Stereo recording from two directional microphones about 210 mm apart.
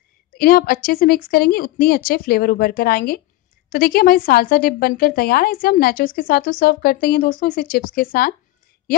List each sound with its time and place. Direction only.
0.4 s a woman's voice: 45° left (ahead or behind)